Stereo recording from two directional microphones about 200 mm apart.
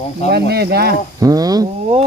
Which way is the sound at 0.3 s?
55° right (ahead or behind).